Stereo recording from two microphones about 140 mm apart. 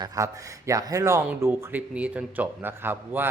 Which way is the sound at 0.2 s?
25° right (ahead or behind).